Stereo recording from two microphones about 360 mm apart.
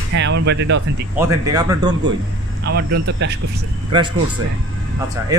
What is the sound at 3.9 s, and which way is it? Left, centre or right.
Speech, centre.